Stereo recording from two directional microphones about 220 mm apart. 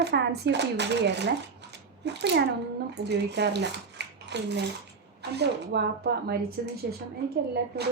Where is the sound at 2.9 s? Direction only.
50° right (ahead or behind).